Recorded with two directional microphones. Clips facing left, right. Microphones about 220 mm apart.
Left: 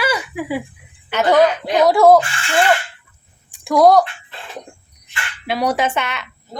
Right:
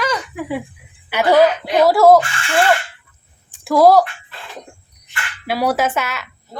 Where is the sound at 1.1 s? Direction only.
10° right (ahead or behind).